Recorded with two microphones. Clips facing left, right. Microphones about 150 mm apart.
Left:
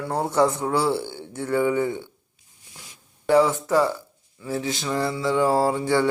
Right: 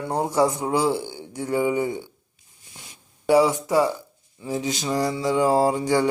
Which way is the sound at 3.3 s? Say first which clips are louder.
Even; 15° right (ahead or behind).